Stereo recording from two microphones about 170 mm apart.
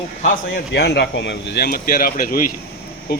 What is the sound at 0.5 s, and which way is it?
Speech, 75° left (ahead or behind).